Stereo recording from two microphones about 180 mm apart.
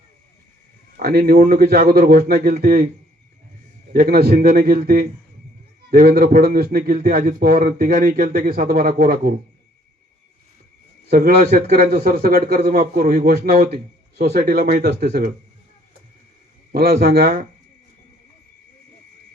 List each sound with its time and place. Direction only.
0.9 s a man's voice: 55° right (ahead or behind)
11.1 s a man's voice: 55° right (ahead or behind)
16.7 s a man's voice: 60° right (ahead or behind)